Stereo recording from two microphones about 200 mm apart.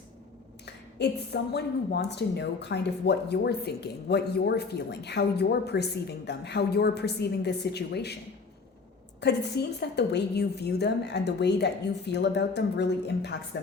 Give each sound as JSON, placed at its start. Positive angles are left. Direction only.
{"t": 0.6, "sound": "a woman's voice", "side_deg": 55}
{"t": 9.2, "sound": "a woman's voice", "side_deg": 55}